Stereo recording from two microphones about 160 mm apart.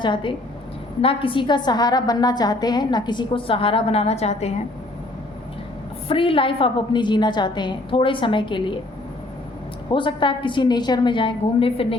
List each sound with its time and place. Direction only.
0.0 s a woman's voice: 30° left (ahead or behind)
6.1 s a woman's voice: 35° left (ahead or behind)
9.9 s a woman's voice: 30° left (ahead or behind)